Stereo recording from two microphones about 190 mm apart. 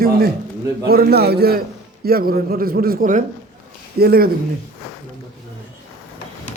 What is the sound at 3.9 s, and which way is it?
Speech, 55° right (ahead or behind).